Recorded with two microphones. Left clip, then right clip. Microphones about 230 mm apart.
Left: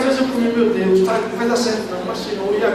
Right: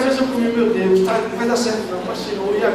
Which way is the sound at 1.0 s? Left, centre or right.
Centre.